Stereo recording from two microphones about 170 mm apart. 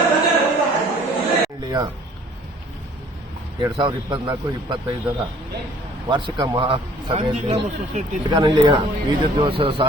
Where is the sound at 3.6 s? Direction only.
25° right (ahead or behind).